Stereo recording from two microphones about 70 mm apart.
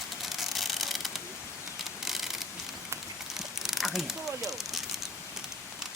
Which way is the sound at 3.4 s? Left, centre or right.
Centre.